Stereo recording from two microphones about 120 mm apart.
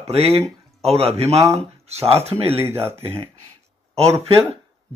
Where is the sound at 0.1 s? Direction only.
55° right (ahead or behind).